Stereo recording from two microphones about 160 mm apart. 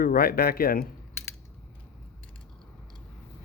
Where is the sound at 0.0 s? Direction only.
65° left (ahead or behind).